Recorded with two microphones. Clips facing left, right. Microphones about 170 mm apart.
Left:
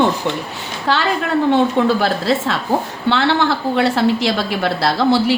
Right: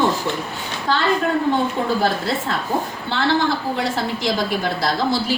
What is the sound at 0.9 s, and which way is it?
A woman's voice, 80° left.